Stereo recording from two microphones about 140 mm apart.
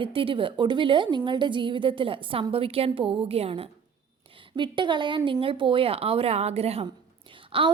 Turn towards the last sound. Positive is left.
turn(degrees=-35)  # may be behind; listen again after turning